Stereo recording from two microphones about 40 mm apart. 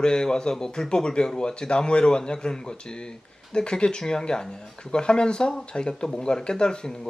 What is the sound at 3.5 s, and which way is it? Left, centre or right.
Speech, left.